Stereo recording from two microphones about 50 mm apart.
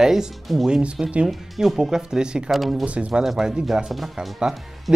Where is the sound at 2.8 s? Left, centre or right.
Right.